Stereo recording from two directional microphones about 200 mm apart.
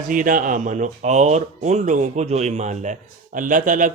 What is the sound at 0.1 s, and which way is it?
Speech, 40° right (ahead or behind).